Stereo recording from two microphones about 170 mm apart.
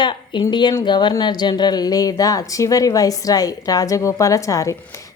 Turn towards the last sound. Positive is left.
turn(degrees=20)  # may be behind; listen again after turning